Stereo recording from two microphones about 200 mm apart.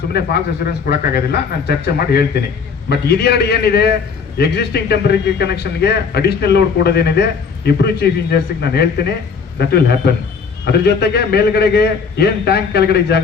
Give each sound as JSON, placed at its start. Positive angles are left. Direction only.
{"t": 0.1, "sound": "speech", "side_deg": 50}
{"t": 2.9, "sound": "a man's voice", "side_deg": 55}